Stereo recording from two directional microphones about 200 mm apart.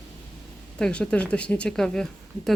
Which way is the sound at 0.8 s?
5° left (ahead or behind).